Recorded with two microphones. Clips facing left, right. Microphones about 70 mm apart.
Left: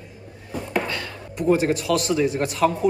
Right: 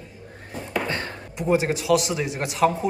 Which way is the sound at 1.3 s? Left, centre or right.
Centre.